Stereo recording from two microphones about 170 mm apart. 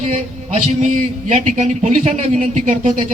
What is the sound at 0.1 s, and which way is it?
Speech, 45° right (ahead or behind).